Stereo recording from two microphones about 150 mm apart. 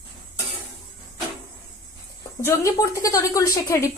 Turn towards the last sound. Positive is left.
turn(degrees=20)  # may be behind; listen again after turning